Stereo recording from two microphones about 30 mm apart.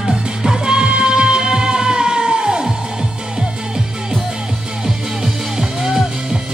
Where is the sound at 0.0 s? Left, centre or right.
Centre.